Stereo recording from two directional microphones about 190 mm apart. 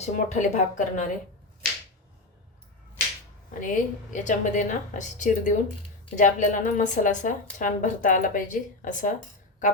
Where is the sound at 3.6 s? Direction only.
45° left (ahead or behind).